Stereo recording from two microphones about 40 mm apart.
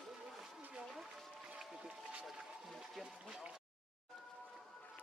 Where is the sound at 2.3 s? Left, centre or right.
Centre.